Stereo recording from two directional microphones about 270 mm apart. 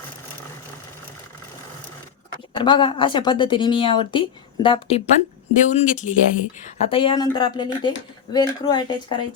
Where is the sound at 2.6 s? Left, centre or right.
Centre.